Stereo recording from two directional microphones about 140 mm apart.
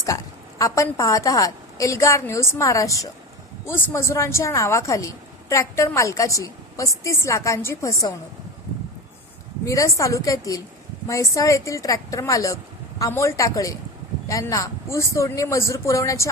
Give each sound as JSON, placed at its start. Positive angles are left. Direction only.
{"t": 0.1, "sound": "a woman's voice", "side_deg": 25}
{"t": 9.6, "sound": "a woman's voice", "side_deg": 20}